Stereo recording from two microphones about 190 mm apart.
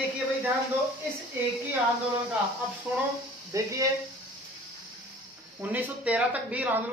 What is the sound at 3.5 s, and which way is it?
Speech, 15° right (ahead or behind).